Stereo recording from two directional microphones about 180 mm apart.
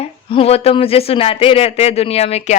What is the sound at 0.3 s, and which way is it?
Speech, 30° left (ahead or behind).